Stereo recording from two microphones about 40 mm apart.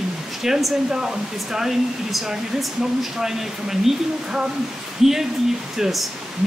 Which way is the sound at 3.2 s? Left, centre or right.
Centre.